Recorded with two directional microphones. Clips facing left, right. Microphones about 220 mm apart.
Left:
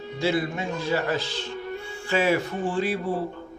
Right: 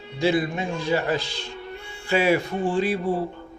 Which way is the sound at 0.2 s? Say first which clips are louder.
Right 3 dB; 15° right (ahead or behind).